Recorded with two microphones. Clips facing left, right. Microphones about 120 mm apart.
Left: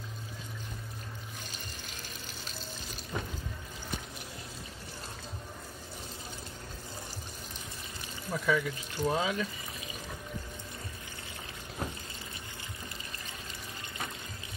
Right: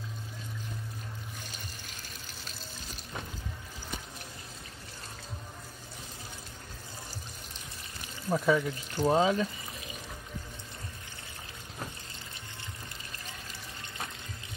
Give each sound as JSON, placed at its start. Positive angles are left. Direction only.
{"t": 8.3, "sound": "speech", "side_deg": -30}